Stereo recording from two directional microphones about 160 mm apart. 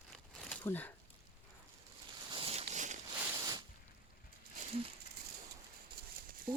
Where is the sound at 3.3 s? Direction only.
25° right (ahead or behind).